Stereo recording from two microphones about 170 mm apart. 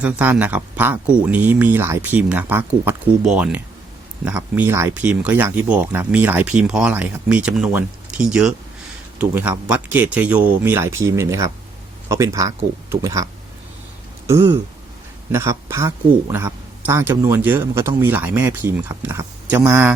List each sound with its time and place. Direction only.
0.0 s speech: 10° right (ahead or behind)
14.3 s speech: 15° right (ahead or behind)